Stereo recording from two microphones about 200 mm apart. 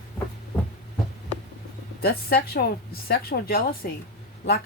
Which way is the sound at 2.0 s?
50° left (ahead or behind).